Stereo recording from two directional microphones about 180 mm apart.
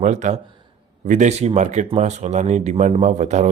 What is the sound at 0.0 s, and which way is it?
Speech, 40° right (ahead or behind).